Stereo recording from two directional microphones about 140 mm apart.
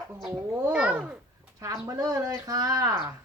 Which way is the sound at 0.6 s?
10° right (ahead or behind).